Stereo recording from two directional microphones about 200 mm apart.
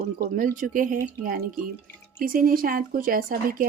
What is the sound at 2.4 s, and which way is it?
Speech, 45° right (ahead or behind).